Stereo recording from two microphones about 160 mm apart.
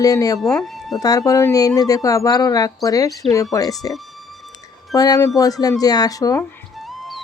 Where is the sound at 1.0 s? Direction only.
20° left (ahead or behind).